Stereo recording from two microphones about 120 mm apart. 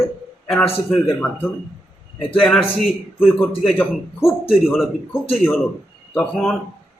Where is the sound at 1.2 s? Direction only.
15° left (ahead or behind).